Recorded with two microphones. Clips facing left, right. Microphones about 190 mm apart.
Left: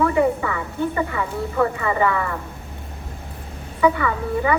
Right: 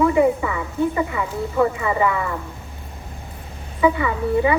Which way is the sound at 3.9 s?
15° right (ahead or behind).